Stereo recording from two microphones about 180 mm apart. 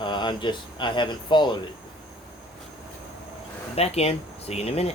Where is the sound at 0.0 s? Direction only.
25° left (ahead or behind).